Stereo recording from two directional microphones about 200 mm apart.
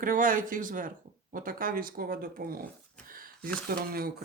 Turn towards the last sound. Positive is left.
turn(degrees=-50)  # may be behind; listen again after turning